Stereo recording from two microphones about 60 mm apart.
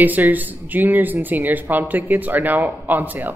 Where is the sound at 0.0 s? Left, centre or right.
Right.